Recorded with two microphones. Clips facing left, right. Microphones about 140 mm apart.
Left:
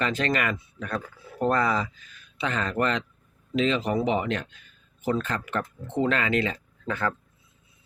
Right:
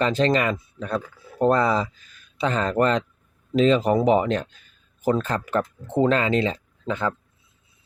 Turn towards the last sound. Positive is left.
turn(degrees=-20)  # may be behind; listen again after turning